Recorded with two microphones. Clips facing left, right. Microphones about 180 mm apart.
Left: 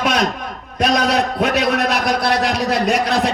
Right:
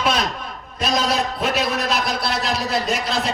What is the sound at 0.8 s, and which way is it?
Speech, 65° left (ahead or behind).